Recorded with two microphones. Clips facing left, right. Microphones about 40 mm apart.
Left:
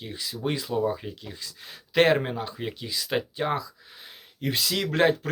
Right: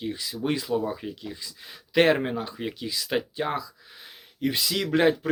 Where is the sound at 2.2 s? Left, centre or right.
Centre.